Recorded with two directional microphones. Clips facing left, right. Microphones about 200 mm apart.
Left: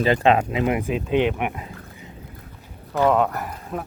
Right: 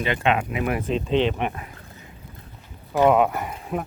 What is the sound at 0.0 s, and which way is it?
Speech, 35° left (ahead or behind).